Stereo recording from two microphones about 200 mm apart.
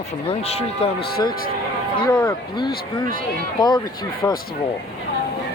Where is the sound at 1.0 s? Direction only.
50° left (ahead or behind).